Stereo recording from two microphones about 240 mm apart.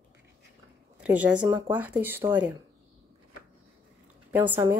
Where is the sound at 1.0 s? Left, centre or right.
Centre.